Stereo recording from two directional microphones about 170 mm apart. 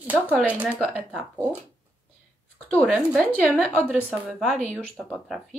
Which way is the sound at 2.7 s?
5° left (ahead or behind).